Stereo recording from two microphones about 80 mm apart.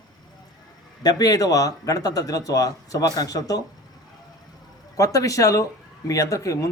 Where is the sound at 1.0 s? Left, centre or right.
Left.